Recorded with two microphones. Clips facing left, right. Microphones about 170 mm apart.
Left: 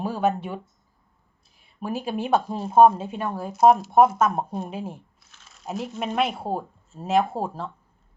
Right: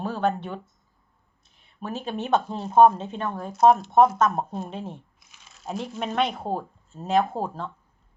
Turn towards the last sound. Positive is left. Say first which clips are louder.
# left 1 dB
turn(degrees=5)  # may be behind; listen again after turning